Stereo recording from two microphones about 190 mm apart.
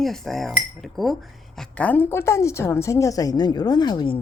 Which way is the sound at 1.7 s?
10° left (ahead or behind).